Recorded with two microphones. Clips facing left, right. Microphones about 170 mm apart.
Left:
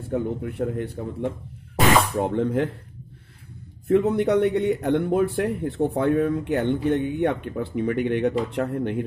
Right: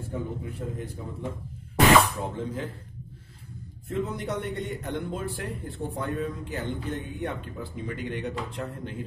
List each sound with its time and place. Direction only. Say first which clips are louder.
0.1 s a man's voice: left 9 dB; 65° left (ahead or behind)
3.8 s speech: left 11 dB; 65° left (ahead or behind)